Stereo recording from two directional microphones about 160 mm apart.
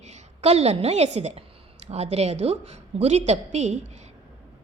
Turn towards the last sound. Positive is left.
turn(degrees=-45)  # may be behind; listen again after turning